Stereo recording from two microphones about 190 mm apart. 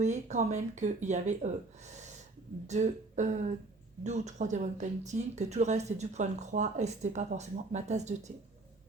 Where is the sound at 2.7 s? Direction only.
40° right (ahead or behind).